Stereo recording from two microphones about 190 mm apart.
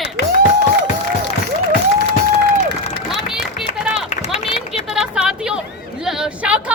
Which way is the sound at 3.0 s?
5° right (ahead or behind).